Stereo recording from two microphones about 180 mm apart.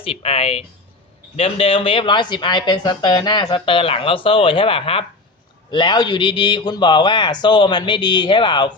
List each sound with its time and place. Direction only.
0.0 s speech: 35° left (ahead or behind)